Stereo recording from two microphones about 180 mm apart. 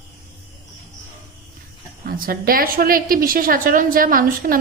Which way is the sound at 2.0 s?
55° right (ahead or behind).